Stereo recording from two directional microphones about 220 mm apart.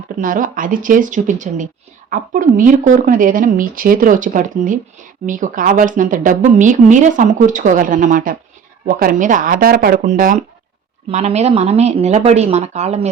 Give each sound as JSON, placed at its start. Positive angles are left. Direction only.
{"t": 0.2, "sound": "a woman's voice", "side_deg": -35}